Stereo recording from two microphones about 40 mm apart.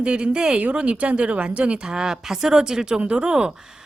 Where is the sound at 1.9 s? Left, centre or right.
Centre.